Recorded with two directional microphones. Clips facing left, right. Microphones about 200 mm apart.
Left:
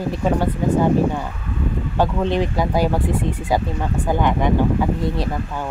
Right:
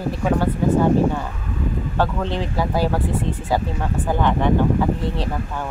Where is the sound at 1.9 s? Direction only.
15° left (ahead or behind).